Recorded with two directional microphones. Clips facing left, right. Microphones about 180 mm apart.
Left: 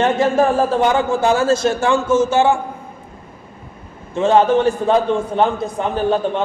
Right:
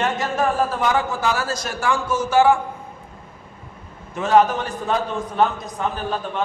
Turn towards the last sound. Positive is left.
turn(degrees=30)  # may be behind; listen again after turning